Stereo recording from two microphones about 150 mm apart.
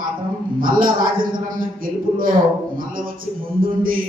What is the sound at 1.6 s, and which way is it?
A man's voice, 65° right (ahead or behind).